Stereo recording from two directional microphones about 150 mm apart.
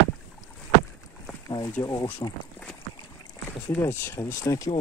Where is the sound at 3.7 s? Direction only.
15° left (ahead or behind).